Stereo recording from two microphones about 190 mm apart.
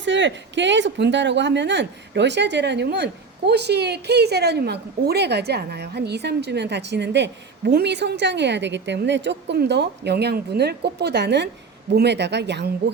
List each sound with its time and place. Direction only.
0.0 s speech: 70° right (ahead or behind)